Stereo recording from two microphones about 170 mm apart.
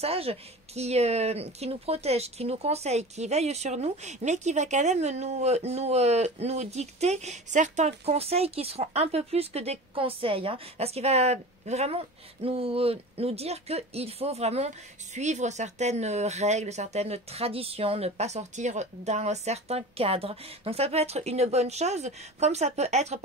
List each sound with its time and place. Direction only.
0.0 s speech: 35° right (ahead or behind)